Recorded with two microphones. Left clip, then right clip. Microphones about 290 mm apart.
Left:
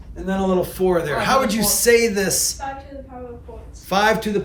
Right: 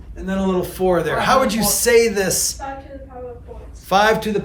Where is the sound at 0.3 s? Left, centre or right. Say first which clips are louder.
Left 1 dB; centre.